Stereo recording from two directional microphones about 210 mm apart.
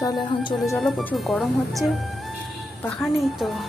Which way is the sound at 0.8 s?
Centre (ahead or behind).